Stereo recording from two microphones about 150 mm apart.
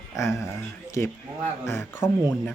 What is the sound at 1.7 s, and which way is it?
Speech, 15° left (ahead or behind).